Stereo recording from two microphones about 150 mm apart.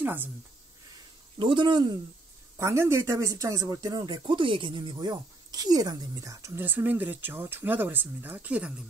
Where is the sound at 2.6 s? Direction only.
20° right (ahead or behind).